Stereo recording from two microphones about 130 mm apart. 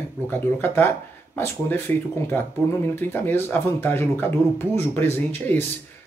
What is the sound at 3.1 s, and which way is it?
Speech, 15° left (ahead or behind).